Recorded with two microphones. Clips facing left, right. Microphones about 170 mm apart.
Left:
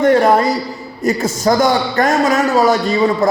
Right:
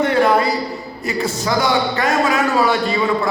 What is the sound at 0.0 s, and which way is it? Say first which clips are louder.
A man's voice: left 4 dB; 45° left (ahead or behind).